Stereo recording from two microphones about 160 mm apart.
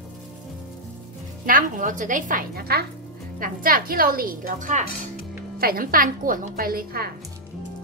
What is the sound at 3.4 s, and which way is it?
A woman's voice, 65° right (ahead or behind).